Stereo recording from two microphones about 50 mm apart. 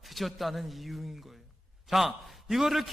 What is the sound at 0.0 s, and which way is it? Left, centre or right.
A man's voice, centre.